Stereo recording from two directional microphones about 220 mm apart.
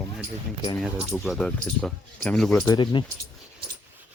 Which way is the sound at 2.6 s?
20° left (ahead or behind).